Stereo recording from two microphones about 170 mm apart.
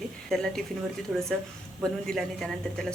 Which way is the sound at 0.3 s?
5° left (ahead or behind).